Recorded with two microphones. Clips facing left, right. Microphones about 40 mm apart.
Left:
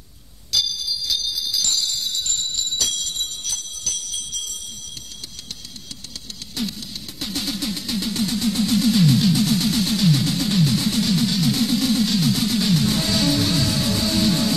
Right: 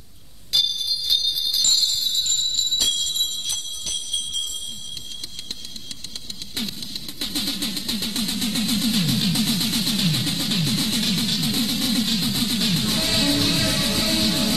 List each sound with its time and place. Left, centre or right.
0.5 s bell: right
0.7 s jingle bell: right
6.6 s music: right
8.7 s music: right
9.9 s music: right
11.6 s music: centre
12.4 s music: right
12.8 s music: centre
13.1 s music: right